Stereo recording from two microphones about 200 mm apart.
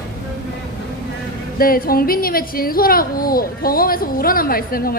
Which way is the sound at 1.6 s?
45° left (ahead or behind).